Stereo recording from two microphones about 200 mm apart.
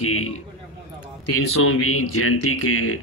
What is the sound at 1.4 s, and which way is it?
Speech, 90° left.